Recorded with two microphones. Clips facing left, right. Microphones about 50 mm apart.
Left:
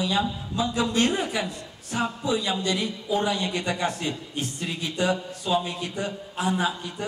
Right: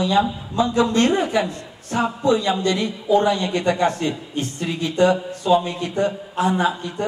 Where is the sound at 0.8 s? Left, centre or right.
Right.